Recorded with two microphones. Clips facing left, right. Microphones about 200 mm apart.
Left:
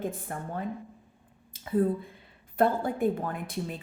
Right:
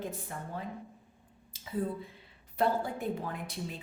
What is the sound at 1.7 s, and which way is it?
A woman's voice, 55° left (ahead or behind).